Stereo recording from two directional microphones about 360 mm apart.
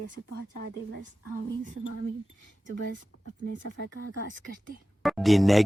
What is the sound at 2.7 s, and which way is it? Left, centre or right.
Speech, right.